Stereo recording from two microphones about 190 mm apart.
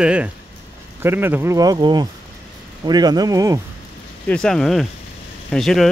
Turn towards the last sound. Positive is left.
turn(degrees=0)  # may be behind; listen again after turning